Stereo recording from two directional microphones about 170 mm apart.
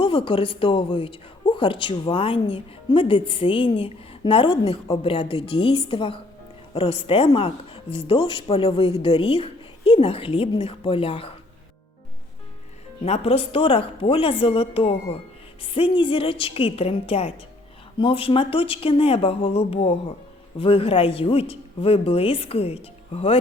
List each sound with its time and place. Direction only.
0.0 s a woman's voice: 30° left (ahead or behind)
13.1 s a woman's voice: 35° left (ahead or behind)